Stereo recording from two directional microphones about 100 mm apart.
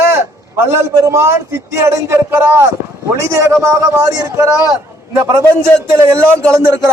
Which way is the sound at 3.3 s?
30° right (ahead or behind).